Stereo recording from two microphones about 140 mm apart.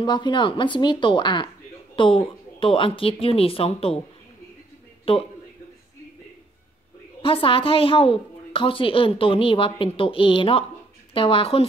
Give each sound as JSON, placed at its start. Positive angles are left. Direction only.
{"t": 0.0, "sound": "a woman's voice", "side_deg": 35}
{"t": 5.1, "sound": "a man's voice", "side_deg": 40}
{"t": 7.2, "sound": "a woman's voice", "side_deg": 40}